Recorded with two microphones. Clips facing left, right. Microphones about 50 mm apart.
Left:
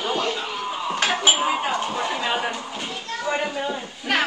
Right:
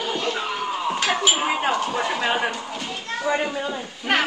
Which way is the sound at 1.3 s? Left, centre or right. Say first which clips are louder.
Right 1 dB; right.